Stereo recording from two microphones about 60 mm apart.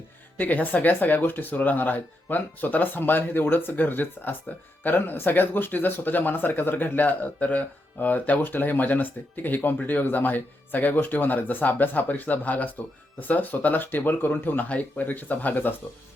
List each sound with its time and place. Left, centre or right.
0.3 s speech: left